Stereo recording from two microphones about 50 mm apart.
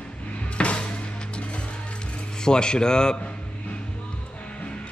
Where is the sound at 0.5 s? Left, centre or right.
Left.